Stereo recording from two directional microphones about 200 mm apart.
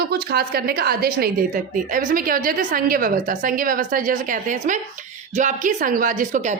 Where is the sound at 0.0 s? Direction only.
50° right (ahead or behind).